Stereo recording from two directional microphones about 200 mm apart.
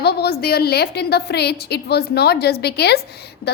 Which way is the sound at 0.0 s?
55° left (ahead or behind).